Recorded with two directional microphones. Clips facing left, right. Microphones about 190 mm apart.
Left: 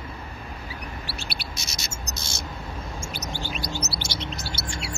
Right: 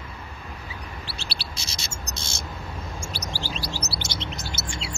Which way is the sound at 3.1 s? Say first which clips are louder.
Left 1 dB; 35° right (ahead or behind).